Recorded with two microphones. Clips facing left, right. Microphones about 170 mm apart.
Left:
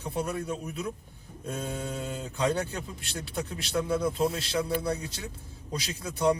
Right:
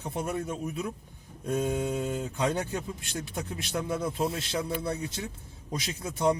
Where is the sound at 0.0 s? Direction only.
20° right (ahead or behind).